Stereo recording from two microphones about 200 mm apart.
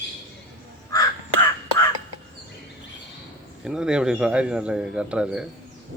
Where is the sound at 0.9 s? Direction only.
15° left (ahead or behind).